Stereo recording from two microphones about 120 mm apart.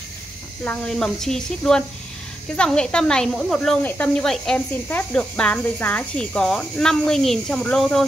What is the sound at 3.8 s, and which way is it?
Speech, 15° left (ahead or behind).